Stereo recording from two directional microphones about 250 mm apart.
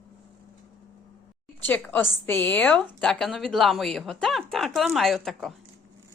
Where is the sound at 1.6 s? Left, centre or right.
Centre.